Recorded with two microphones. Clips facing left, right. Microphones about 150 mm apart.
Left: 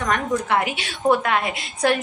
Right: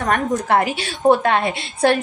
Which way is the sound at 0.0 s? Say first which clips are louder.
Right 3 dB; 40° right (ahead or behind).